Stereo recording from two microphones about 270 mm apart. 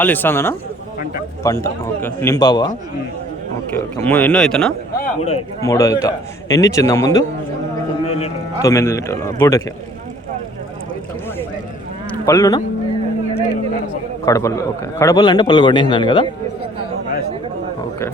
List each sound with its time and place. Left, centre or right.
0.0 s a man's voice: centre
3.8 s a man's voice: centre
8.7 s a man's voice: centre
12.2 s a man's voice: centre
14.3 s a man's voice: centre